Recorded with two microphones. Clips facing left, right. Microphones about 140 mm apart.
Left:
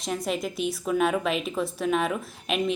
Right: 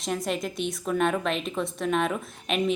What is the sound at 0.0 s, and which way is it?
A woman's voice, centre (ahead or behind).